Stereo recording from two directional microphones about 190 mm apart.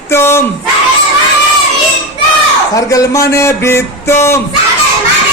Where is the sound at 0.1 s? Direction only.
15° left (ahead or behind).